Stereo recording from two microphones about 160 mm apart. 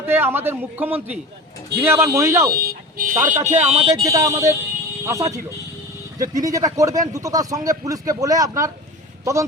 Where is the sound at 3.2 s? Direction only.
50° right (ahead or behind).